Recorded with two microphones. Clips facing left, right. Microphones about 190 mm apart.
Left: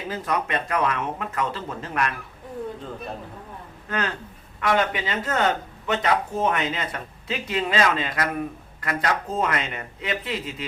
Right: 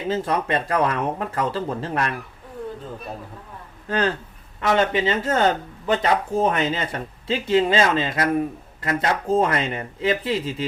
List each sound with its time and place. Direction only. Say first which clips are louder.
0.1 s speech: right 4 dB; 30° right (ahead or behind)
3.8 s speech: right 6 dB; 30° right (ahead or behind)